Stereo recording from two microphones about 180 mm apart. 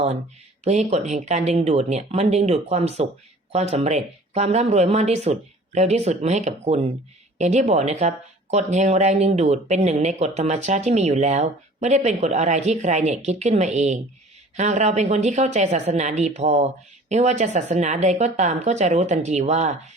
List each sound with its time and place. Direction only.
0.6 s speech: 40° right (ahead or behind)